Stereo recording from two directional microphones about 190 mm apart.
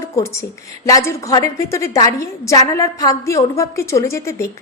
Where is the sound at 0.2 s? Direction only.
15° left (ahead or behind).